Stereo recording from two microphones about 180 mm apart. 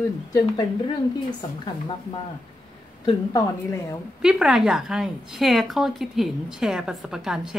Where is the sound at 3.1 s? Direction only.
20° left (ahead or behind).